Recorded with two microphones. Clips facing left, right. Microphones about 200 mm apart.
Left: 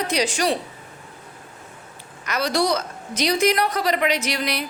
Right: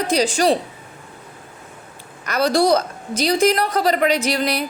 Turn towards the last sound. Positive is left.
turn(degrees=-35)  # may be behind; listen again after turning